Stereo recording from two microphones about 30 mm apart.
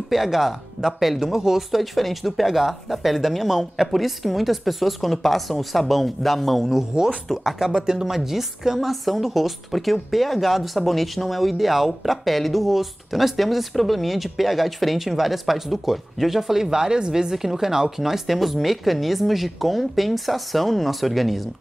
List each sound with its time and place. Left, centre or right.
0.1 s speech: centre
1.8 s speech: centre
6.7 s speech: centre
7.2 s speech: centre
7.7 s speech: right
8.1 s speech: centre